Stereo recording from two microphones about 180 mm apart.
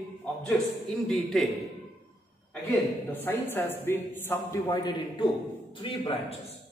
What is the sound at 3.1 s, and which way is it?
A man's voice, 10° left (ahead or behind).